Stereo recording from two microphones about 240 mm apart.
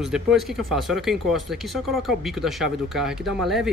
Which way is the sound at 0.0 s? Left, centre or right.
Centre.